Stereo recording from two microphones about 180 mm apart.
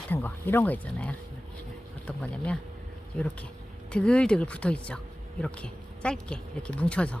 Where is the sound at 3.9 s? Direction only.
5° left (ahead or behind).